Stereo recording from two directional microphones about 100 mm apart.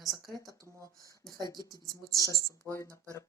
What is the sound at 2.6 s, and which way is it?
Speech, 25° left (ahead or behind).